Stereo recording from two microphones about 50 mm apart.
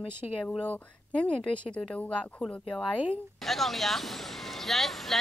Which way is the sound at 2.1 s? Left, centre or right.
Left.